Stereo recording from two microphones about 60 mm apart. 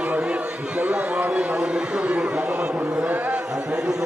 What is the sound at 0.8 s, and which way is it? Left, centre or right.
A man's voice, right.